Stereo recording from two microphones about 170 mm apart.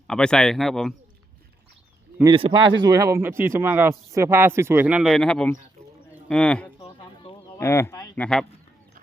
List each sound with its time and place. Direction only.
0.1 s speech: 5° left (ahead or behind)
2.2 s speech: 30° right (ahead or behind); by 6.7 s 5° left (ahead or behind)
6.7 s a sound: 25° left (ahead or behind)
7.6 s speech: 15° left (ahead or behind)
8.1 s speech: 5° left (ahead or behind)